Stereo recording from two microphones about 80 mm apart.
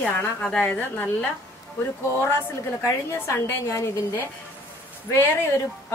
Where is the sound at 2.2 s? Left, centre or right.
Left.